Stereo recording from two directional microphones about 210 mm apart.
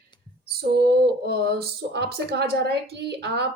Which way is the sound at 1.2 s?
50° right (ahead or behind).